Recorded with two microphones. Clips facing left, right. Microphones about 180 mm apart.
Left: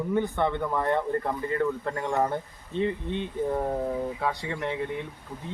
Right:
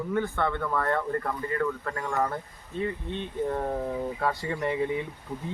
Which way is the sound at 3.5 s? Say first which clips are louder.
Left 3 dB; 5° left (ahead or behind).